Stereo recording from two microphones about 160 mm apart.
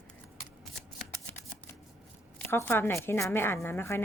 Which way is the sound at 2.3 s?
15° left (ahead or behind).